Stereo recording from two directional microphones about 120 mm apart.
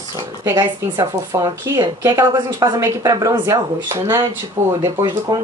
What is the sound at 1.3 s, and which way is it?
Speech, 25° right (ahead or behind).